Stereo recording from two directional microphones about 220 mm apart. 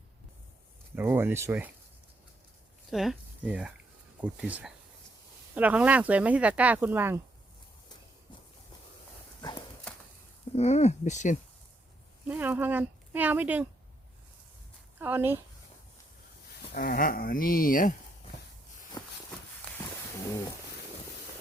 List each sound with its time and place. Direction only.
0.9 s speech: 10° right (ahead or behind)
2.9 s speech: centre (ahead or behind)
9.4 s horse: 20° left (ahead or behind)
10.5 s speech: 30° left (ahead or behind)
12.3 s speech: 10° right (ahead or behind)
14.9 s speech: 10° right (ahead or behind)
16.7 s speech: 40° left (ahead or behind)
19.0 s walk: 20° left (ahead or behind)